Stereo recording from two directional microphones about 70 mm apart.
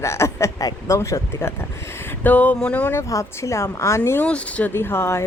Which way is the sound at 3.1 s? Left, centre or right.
Left.